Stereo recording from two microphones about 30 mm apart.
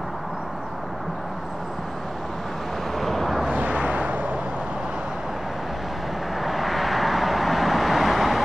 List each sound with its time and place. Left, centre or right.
3.0 s vehicle: centre
3.5 s vehicle: right
6.4 s vehicle: centre